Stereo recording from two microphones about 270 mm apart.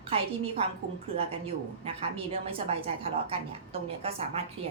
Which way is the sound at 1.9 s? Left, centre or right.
Right.